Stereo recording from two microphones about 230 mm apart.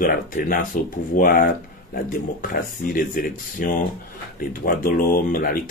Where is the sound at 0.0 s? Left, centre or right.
Left.